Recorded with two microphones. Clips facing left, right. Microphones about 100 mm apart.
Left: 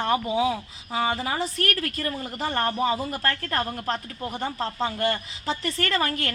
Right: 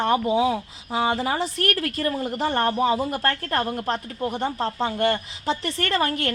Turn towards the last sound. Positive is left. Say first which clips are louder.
# right 2 dB
turn(degrees=-20)  # may be behind; listen again after turning